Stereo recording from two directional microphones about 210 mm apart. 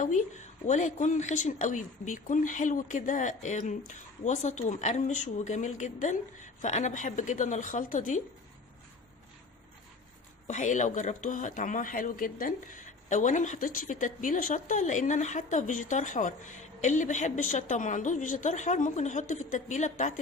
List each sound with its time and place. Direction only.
0.0 s speech: 35° left (ahead or behind)
10.4 s speech: 35° left (ahead or behind)